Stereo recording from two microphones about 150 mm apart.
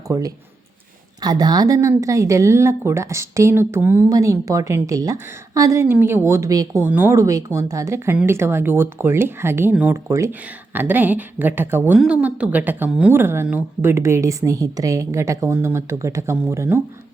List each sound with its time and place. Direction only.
0.1 s a woman's voice: 25° right (ahead or behind)